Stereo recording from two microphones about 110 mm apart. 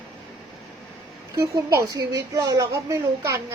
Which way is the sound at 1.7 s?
35° right (ahead or behind).